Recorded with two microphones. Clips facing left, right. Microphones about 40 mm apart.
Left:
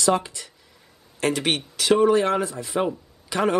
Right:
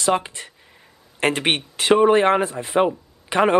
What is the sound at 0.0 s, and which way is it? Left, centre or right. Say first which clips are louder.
A man's voice: right 1 dB; right.